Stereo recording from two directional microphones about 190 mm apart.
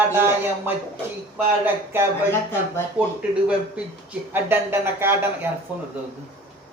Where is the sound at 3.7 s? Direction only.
10° right (ahead or behind).